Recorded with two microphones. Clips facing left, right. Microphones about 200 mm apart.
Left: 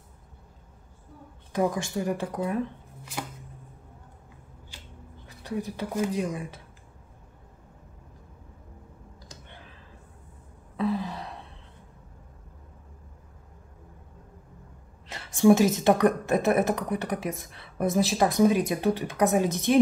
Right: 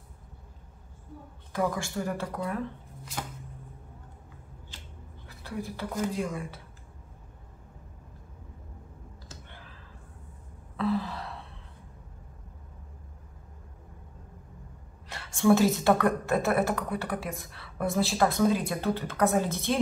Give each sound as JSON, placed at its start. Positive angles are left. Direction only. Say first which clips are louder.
{"t": 1.5, "sound": "speech", "louder": "left 3 dB", "side_deg": 20}
{"t": 5.2, "sound": "speech", "louder": "left 4 dB", "side_deg": 20}
{"t": 10.8, "sound": "sigh", "louder": "left 1 dB", "side_deg": 15}
{"t": 15.0, "sound": "speech", "louder": "left 4 dB", "side_deg": 20}